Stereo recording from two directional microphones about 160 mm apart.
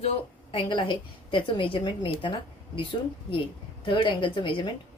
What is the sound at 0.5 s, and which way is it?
A woman's voice, 30° left (ahead or behind).